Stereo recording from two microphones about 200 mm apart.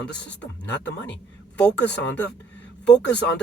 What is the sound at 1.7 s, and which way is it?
A man's voice, 60° left (ahead or behind).